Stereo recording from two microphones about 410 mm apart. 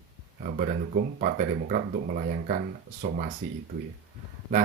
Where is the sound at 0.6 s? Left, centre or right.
Right.